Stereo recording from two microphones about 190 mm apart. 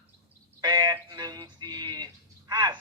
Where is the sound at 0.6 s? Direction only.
20° right (ahead or behind).